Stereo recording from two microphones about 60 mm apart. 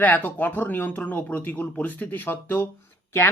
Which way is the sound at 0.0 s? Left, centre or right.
Left.